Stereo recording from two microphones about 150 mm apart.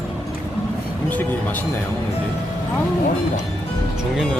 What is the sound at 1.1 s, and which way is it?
Speech, 10° left (ahead or behind).